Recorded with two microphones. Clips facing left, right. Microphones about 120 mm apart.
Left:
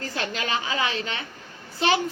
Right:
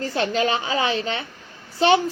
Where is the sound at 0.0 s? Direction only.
30° right (ahead or behind).